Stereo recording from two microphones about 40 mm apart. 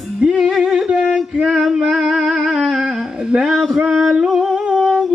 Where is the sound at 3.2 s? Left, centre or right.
Centre.